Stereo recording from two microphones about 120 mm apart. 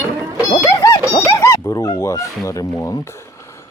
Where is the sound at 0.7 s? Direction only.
25° left (ahead or behind).